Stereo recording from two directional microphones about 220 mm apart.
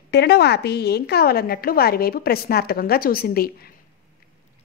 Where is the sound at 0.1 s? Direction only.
50° left (ahead or behind).